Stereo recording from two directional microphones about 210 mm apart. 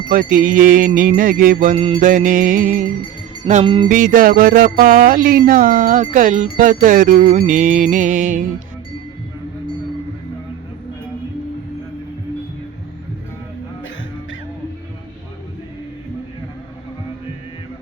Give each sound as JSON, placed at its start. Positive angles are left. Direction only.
{"t": 0.1, "sound": "music", "side_deg": -40}
{"t": 3.4, "sound": "a sound", "side_deg": -35}
{"t": 3.8, "sound": "music", "side_deg": -40}